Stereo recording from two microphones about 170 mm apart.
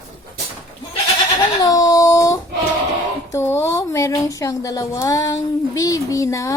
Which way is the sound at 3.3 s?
15° left (ahead or behind).